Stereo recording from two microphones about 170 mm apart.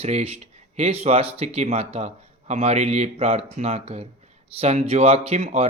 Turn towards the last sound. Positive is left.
turn(degrees=-40)  # may be behind; listen again after turning